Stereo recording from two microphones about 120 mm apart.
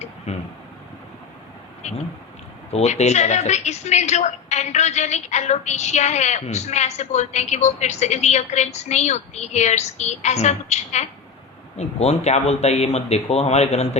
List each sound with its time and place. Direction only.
0.3 s speech: 60° left (ahead or behind)
2.7 s a woman's voice: 65° left (ahead or behind)